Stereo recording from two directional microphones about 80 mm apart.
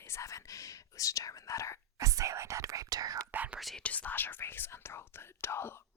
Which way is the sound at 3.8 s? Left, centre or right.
Centre.